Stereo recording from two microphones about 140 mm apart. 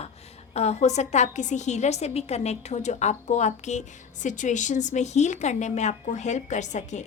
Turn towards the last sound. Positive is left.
turn(degrees=55)  # may be behind; listen again after turning